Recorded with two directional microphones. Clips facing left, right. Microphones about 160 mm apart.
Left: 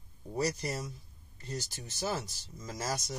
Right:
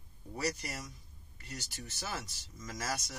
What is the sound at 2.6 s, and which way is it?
Speech, 30° left (ahead or behind).